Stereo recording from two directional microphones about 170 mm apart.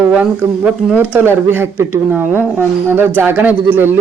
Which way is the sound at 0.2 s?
5° right (ahead or behind).